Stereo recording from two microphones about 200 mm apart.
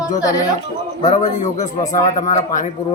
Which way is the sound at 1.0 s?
40° left (ahead or behind).